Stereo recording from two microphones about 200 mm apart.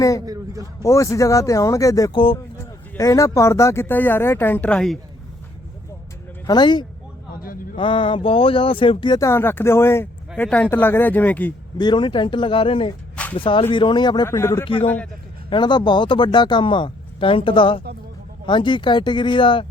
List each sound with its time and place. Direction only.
0.8 s speech: 15° left (ahead or behind)
6.5 s speech: 20° left (ahead or behind)
7.4 s a sound: 45° left (ahead or behind)
7.8 s speech: 25° left (ahead or behind); by 11.5 s 10° left (ahead or behind)
11.8 s speech: 25° left (ahead or behind)
14.6 s speech: 25° left (ahead or behind)
14.8 s speech: 5° left (ahead or behind)
15.4 s speech: 25° left (ahead or behind)